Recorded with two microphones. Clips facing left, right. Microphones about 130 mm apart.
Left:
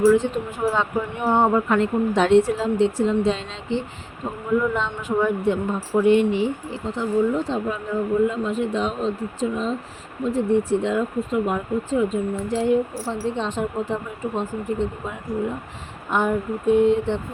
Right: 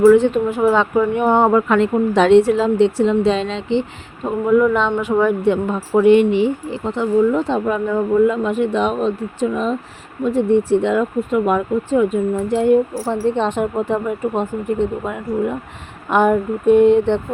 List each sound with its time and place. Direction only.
0.0 s speech: 65° right (ahead or behind)